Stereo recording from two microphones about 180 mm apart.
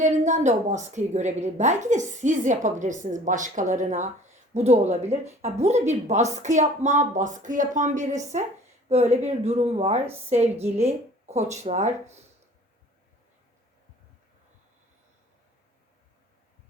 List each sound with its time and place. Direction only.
0.0 s a woman's voice: 40° right (ahead or behind)